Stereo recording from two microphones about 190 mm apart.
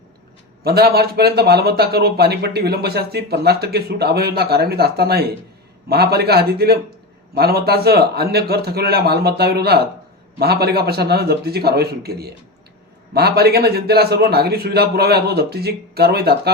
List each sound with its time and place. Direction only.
0.6 s speech: 55° right (ahead or behind)